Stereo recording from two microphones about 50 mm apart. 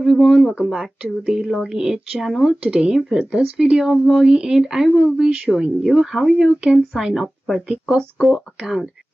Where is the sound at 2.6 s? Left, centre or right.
Centre.